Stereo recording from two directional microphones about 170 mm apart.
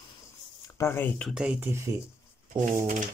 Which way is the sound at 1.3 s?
5° right (ahead or behind).